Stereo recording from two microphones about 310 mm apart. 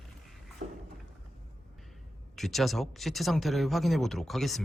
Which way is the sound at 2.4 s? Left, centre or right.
Centre.